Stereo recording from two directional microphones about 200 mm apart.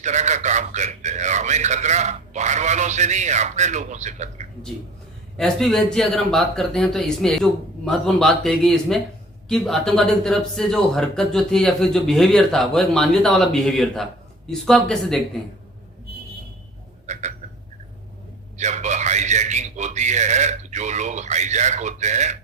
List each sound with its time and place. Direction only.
0.0 s a man's voice: 35° right (ahead or behind)
5.4 s a man's voice: centre (ahead or behind)
17.1 s a sound: 35° right (ahead or behind)
18.5 s a man's voice: 35° right (ahead or behind)